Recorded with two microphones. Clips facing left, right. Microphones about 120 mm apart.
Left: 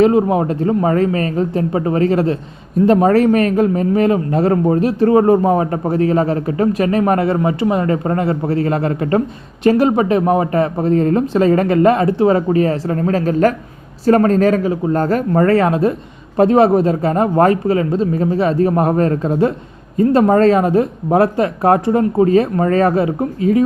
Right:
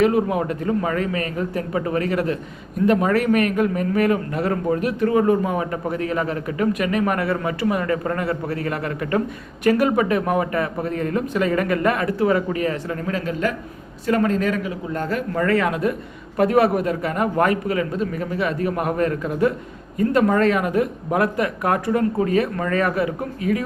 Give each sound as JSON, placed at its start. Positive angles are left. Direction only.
{"t": 0.0, "sound": "a man's voice", "side_deg": 30}